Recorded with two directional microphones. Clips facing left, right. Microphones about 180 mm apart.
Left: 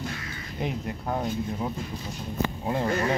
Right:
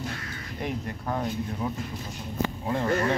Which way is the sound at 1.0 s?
15° left (ahead or behind).